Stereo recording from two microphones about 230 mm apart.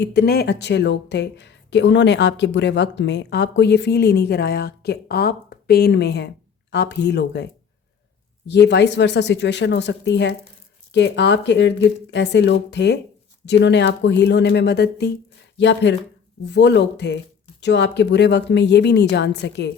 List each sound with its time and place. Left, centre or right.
0.0 s speech: left